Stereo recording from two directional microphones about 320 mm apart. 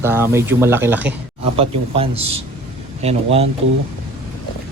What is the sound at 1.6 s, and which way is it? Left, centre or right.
Speech, centre.